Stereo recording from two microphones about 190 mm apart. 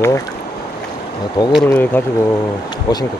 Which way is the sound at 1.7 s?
10° left (ahead or behind).